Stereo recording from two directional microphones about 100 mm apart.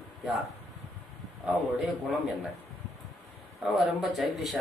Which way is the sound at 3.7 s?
Centre (ahead or behind).